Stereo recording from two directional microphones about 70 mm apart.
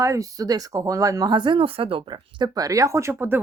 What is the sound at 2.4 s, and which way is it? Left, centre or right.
Speech, right.